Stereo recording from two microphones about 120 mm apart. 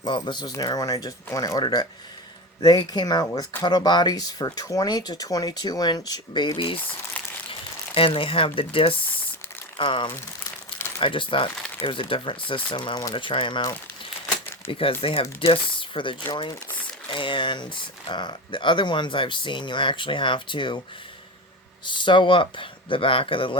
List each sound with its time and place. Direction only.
0.0 s speech: 40° left (ahead or behind)
7.9 s speech: 50° left (ahead or behind)
12.7 s speech: 35° left (ahead or behind)
14.7 s speech: 50° left (ahead or behind)
16.3 s speech: 35° left (ahead or behind)
21.9 s speech: 40° left (ahead or behind)